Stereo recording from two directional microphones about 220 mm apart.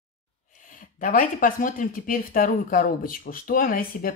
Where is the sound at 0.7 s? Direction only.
40° left (ahead or behind).